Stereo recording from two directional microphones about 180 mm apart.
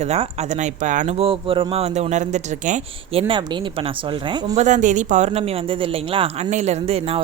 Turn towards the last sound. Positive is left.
turn(degrees=-35)  # may be behind; listen again after turning